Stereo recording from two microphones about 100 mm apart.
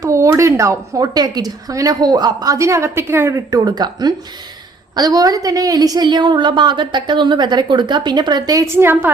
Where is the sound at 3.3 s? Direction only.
40° right (ahead or behind).